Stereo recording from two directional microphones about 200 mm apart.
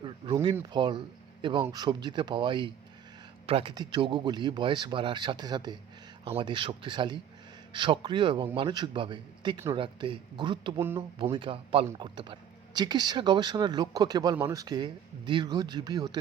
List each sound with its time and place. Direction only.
0.2 s a man's voice: 25° right (ahead or behind)
10.8 s speech: 10° right (ahead or behind)
11.2 s a man's voice: 25° right (ahead or behind)